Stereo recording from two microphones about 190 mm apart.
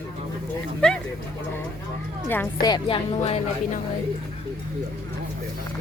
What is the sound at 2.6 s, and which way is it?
Speech, 20° left (ahead or behind).